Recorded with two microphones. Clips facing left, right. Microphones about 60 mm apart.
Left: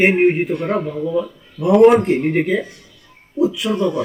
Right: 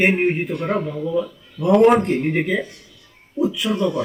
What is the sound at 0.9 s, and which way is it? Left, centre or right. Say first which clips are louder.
Speech: left 2 dB; left.